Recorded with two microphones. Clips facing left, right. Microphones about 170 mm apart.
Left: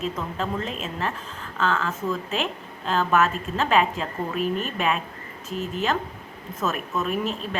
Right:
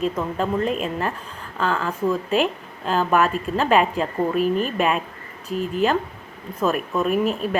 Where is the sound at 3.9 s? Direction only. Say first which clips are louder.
Right 7 dB; 45° right (ahead or behind).